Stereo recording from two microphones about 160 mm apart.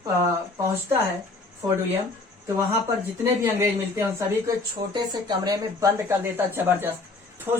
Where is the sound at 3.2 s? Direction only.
15° right (ahead or behind).